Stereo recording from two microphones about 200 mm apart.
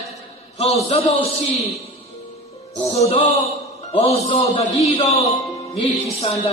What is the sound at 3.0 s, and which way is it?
A man's voice, 25° left (ahead or behind).